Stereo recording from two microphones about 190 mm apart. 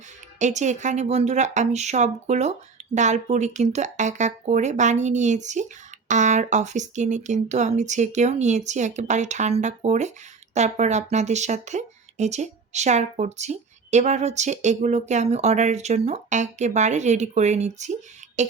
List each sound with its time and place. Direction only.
0.3 s speech: 40° right (ahead or behind)